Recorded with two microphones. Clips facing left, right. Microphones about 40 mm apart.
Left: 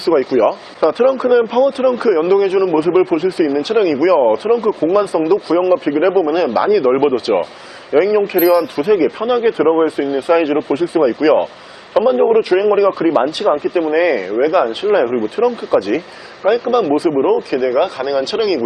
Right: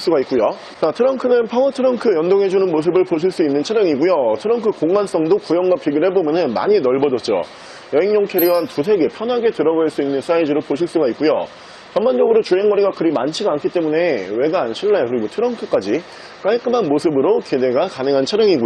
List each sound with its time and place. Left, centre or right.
0.0 s speech: centre